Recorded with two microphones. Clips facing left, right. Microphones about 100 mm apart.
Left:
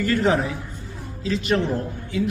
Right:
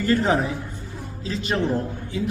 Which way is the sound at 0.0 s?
30° right (ahead or behind).